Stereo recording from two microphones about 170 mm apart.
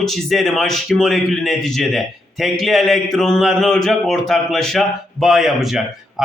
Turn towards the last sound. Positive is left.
turn(degrees=0)  # may be behind; listen again after turning